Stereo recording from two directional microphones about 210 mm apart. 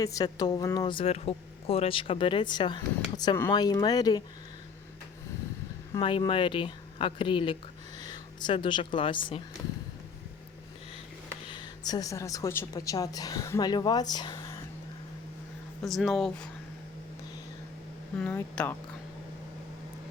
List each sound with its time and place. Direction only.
0.0 s speech: 15° left (ahead or behind)
5.9 s speech: 25° left (ahead or behind)
11.4 s a woman's voice: 20° left (ahead or behind)
15.8 s speech: centre (ahead or behind)
18.2 s speech: 5° left (ahead or behind)